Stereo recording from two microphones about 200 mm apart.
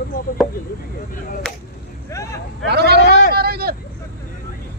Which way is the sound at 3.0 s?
65° left (ahead or behind).